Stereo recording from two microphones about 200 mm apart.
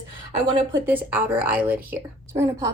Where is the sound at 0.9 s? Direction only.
10° right (ahead or behind).